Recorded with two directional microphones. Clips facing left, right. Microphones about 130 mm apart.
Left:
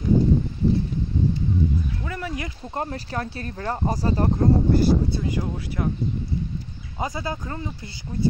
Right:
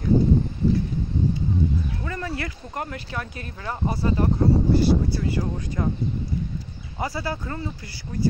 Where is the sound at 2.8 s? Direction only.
35° left (ahead or behind).